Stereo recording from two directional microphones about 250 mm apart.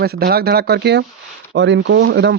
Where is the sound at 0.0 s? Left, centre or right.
Right.